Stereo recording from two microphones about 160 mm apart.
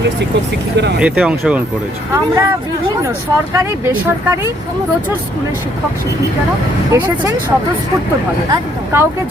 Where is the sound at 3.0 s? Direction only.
20° right (ahead or behind).